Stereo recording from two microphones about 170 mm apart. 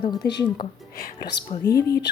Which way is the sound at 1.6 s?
20° left (ahead or behind).